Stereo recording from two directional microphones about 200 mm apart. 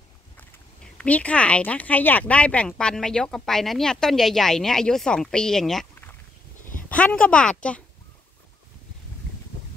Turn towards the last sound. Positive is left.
turn(degrees=5)  # may be behind; listen again after turning